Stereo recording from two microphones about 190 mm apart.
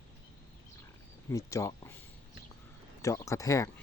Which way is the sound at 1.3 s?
15° left (ahead or behind).